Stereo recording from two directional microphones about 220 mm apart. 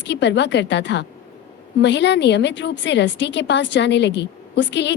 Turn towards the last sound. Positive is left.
turn(degrees=55)  # may be behind; listen again after turning